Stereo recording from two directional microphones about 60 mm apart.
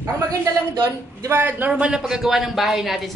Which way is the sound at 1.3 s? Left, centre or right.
Right.